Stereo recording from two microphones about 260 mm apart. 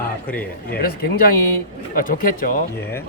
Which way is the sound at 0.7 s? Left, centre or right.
Left.